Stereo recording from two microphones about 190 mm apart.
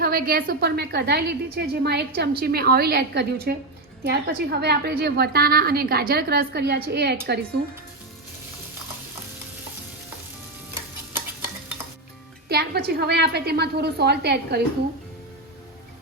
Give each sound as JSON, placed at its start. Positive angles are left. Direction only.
{"t": 0.0, "sound": "a woman's voice", "side_deg": -50}
{"t": 12.5, "sound": "a woman's voice", "side_deg": -55}